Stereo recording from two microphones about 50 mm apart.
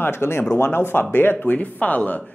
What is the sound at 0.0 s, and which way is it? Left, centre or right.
Speech, left.